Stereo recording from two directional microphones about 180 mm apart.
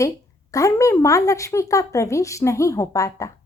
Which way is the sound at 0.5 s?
15° left (ahead or behind).